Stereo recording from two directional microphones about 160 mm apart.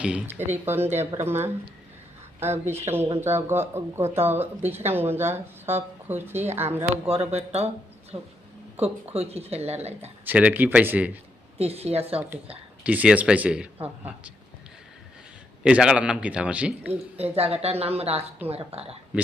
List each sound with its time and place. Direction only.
0.0 s speech: 5° right (ahead or behind)
7.3 s speech: 40° right (ahead or behind)
10.2 s speech: 10° right (ahead or behind)
11.5 s speech: 40° right (ahead or behind)
12.8 s speech: 10° right (ahead or behind)
15.6 s speech: 5° right (ahead or behind)
16.9 s speech: 40° right (ahead or behind)